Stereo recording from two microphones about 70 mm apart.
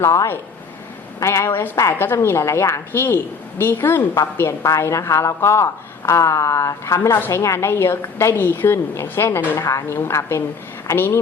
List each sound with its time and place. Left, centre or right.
0.0 s a woman's voice: left
9.6 s a woman's voice: left